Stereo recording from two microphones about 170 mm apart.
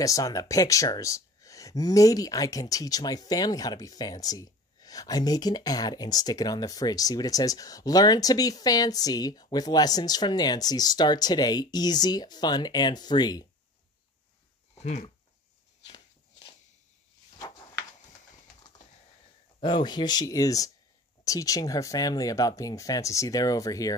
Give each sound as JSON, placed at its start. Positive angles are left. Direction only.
{"t": 0.0, "sound": "speech", "side_deg": 20}
{"t": 14.8, "sound": "speech", "side_deg": 40}
{"t": 15.8, "sound": "walk", "side_deg": 25}
{"t": 17.4, "sound": "a sound", "side_deg": 20}
{"t": 19.6, "sound": "speech", "side_deg": 25}